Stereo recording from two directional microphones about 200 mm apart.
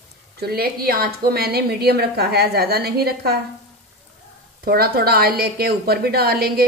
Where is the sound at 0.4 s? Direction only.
50° right (ahead or behind).